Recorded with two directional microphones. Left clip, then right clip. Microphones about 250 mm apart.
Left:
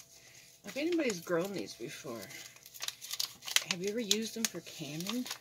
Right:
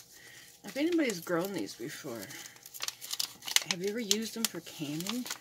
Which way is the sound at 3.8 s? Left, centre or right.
Right.